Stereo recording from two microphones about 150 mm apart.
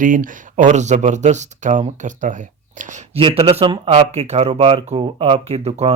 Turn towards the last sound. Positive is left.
turn(degrees=-40)  # may be behind; listen again after turning